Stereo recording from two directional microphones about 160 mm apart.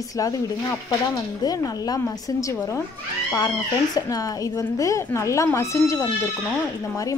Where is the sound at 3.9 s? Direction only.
25° left (ahead or behind).